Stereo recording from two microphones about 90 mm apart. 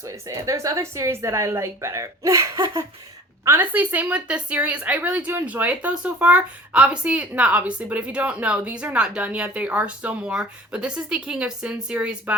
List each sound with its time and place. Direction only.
0.0 s speech: 35° right (ahead or behind)
3.4 s speech: 25° right (ahead or behind)